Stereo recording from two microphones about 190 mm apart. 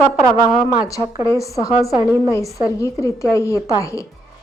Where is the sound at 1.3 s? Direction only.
15° left (ahead or behind).